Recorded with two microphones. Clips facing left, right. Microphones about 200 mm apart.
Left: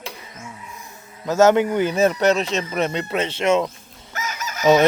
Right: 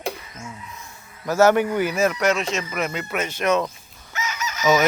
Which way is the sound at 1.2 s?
20° left (ahead or behind).